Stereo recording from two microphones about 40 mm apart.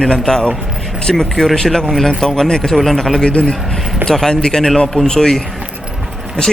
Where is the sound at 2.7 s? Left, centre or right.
Centre.